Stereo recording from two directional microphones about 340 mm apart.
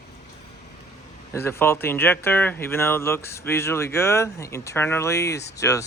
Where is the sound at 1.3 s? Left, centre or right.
Centre.